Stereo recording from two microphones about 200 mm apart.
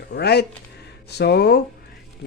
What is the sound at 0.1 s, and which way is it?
Speech, 55° left (ahead or behind).